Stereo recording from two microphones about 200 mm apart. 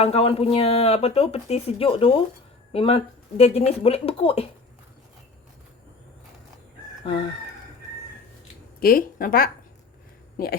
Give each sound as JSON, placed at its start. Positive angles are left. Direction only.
{"t": 0.0, "sound": "speech", "side_deg": 30}
{"t": 8.8, "sound": "a woman's voice", "side_deg": 45}